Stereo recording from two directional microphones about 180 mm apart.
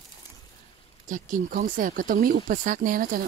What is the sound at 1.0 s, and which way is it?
Speech, 45° right (ahead or behind).